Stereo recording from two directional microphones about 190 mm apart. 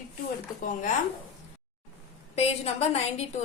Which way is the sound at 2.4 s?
35° left (ahead or behind).